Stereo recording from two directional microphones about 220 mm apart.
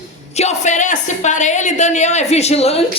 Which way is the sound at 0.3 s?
30° left (ahead or behind).